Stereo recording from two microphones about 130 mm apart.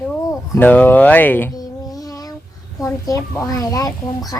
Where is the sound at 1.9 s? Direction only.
30° left (ahead or behind).